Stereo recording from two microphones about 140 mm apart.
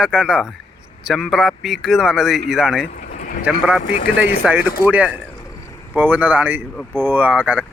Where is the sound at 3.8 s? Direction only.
80° left.